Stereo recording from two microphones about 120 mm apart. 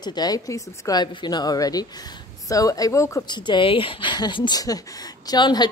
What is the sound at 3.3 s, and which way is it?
Speech, 40° left (ahead or behind).